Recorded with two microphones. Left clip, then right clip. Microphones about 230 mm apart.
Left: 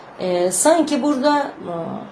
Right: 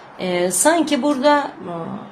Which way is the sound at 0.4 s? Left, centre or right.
Right.